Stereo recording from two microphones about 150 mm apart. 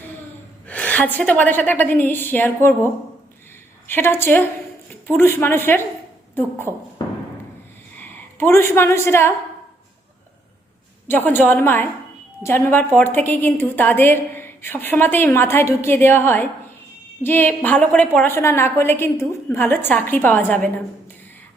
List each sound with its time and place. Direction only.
0.7 s a woman's voice: 10° left (ahead or behind)
7.0 s a sound: 25° left (ahead or behind)
7.9 s a woman's voice: 15° left (ahead or behind)
11.1 s a woman's voice: 15° left (ahead or behind)